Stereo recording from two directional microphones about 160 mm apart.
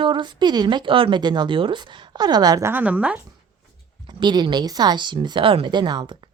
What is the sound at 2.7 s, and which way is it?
Speech, 10° right (ahead or behind).